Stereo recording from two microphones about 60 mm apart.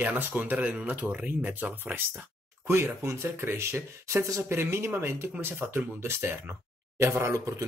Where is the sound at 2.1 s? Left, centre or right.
Right.